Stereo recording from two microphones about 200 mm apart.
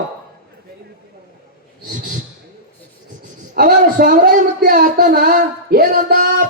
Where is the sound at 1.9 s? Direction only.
40° right (ahead or behind).